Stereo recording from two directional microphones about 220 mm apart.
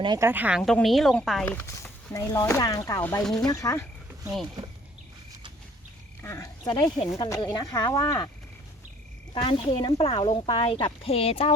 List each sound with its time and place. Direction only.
0.0 s speech: 15° right (ahead or behind); by 3.8 s 15° left (ahead or behind)
6.2 s speech: 15° left (ahead or behind)
9.3 s speech: 25° left (ahead or behind)